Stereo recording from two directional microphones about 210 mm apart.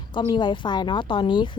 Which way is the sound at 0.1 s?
20° left (ahead or behind).